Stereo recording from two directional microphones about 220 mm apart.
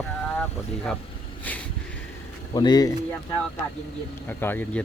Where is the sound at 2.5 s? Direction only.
20° left (ahead or behind).